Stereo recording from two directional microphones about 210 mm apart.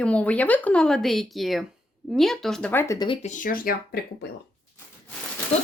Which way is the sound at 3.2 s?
40° left (ahead or behind).